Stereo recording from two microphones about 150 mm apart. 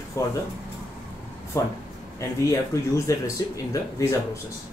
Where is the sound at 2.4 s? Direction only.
20° left (ahead or behind).